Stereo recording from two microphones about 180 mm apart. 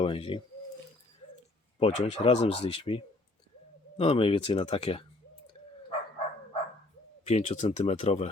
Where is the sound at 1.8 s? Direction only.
35° left (ahead or behind).